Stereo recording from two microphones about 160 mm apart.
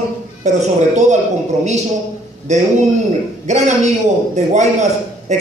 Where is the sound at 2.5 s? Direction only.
45° right (ahead or behind).